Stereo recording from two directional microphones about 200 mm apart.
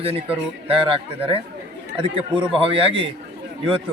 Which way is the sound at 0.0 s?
30° right (ahead or behind).